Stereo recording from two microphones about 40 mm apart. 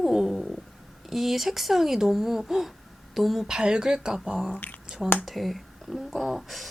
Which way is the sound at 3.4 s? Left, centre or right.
Centre.